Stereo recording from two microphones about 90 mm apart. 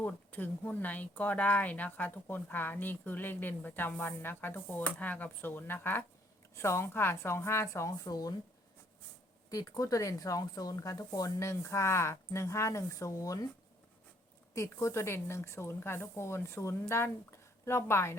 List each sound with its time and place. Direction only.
0.0 s speech: 20° left (ahead or behind); by 8.4 s 45° left (ahead or behind)
9.5 s speech: 40° left (ahead or behind)
14.5 s a woman's voice: 35° left (ahead or behind)